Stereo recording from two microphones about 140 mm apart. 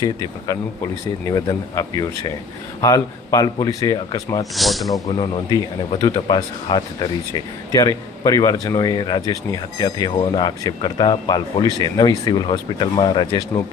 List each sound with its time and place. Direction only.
1.3 s speech: 25° left (ahead or behind)
4.5 s speech: centre (ahead or behind)
5.1 s a man's voice: 35° left (ahead or behind)